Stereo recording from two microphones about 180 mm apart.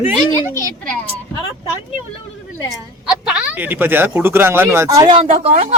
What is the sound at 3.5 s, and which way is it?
Speech, 10° right (ahead or behind).